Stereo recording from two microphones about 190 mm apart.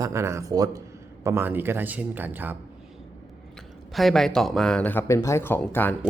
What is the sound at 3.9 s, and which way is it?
Speech, centre (ahead or behind).